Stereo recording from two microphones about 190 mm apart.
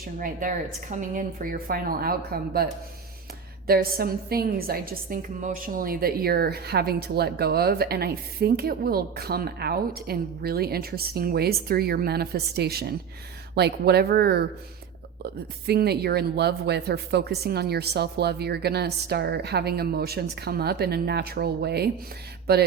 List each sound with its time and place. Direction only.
0.2 s a woman's voice: 45° right (ahead or behind)
3.7 s a woman's voice: 55° right (ahead or behind)
15.6 s a woman's voice: 60° right (ahead or behind)